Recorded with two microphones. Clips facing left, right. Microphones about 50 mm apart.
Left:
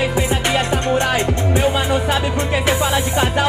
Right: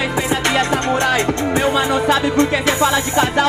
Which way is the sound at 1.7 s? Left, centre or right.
Centre.